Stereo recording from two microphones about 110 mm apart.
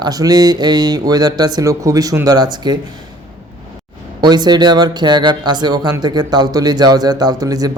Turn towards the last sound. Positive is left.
turn(degrees=-35)  # may be behind; listen again after turning